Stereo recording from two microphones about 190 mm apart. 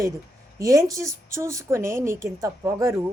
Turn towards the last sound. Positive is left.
turn(degrees=-15)  # may be behind; listen again after turning